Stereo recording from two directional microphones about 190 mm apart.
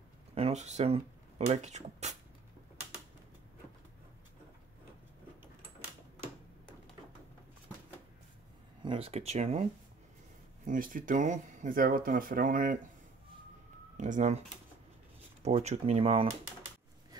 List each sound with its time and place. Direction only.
0.3 s speech: 35° right (ahead or behind)
8.8 s speech: 30° right (ahead or behind)
10.7 s speech: 45° right (ahead or behind)
13.9 s speech: 40° right (ahead or behind)
15.4 s speech: 35° right (ahead or behind)